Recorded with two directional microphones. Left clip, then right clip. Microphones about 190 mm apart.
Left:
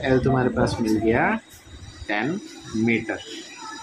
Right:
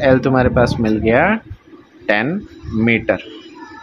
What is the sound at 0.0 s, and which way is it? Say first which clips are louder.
Speech: right 8 dB; 55° right (ahead or behind).